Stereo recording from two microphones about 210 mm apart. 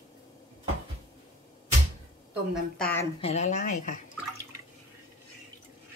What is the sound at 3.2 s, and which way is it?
Speech, 30° left (ahead or behind).